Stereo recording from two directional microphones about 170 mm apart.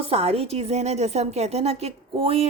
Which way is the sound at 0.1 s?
35° right (ahead or behind).